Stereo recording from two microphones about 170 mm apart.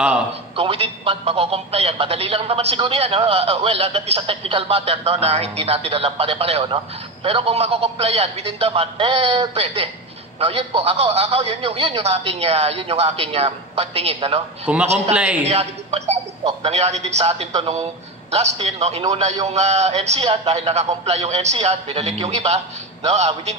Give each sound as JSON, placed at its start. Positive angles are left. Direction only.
{"t": 0.6, "sound": "a man's voice", "side_deg": -35}
{"t": 14.7, "sound": "a man's voice", "side_deg": -5}
{"t": 15.4, "sound": "a man's voice", "side_deg": -40}